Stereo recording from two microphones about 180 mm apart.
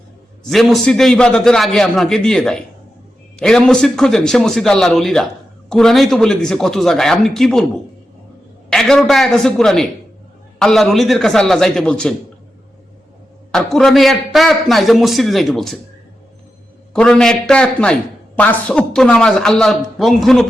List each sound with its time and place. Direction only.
0.4 s a man's voice: centre (ahead or behind)
8.7 s a man's voice: 5° left (ahead or behind)
13.5 s a man's voice: centre (ahead or behind)
16.9 s a man's voice: 5° left (ahead or behind)